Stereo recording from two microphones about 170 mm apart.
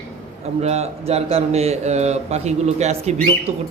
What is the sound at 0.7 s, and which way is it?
A man's voice, 40° right (ahead or behind).